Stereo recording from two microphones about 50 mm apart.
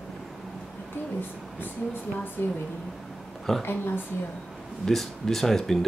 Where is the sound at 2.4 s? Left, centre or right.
Left.